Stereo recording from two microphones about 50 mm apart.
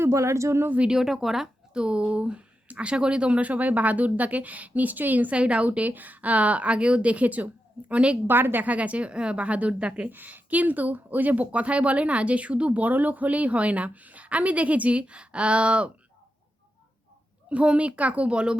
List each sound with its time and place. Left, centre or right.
0.0 s speech: right
0.8 s speech: centre
1.7 s speech: centre; by 5.4 s right
5.4 s speech: right
8.3 s a woman's voice: right
8.6 s speech: right
10.1 s speech: right
17.5 s speech: right